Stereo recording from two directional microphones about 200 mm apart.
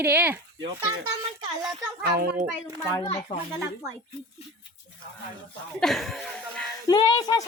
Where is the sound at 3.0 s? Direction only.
30° left (ahead or behind).